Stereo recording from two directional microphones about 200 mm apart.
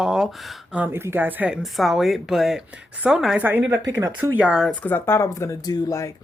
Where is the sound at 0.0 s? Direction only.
Centre (ahead or behind).